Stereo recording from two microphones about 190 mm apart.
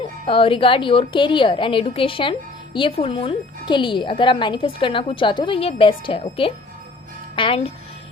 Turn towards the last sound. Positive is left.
turn(degrees=30)  # may be behind; listen again after turning